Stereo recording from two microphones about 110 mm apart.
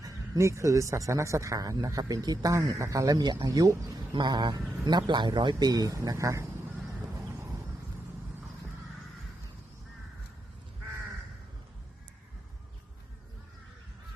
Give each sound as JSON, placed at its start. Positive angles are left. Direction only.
{"t": 0.0, "sound": "speech", "side_deg": -30}
{"t": 4.1, "sound": "a sound", "side_deg": -45}
{"t": 4.9, "sound": "speech", "side_deg": -40}